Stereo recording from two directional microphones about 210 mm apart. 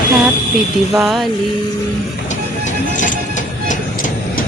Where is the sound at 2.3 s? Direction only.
35° left (ahead or behind).